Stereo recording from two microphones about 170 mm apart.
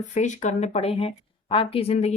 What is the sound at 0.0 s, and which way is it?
A woman's voice, 45° left (ahead or behind).